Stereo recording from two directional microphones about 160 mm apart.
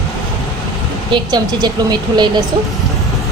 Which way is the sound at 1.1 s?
25° right (ahead or behind).